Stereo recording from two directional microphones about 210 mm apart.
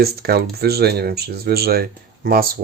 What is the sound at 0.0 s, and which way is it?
Speech, 50° right (ahead or behind).